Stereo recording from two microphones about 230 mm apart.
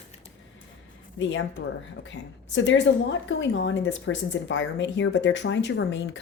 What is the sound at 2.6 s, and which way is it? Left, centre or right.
A woman's voice, left.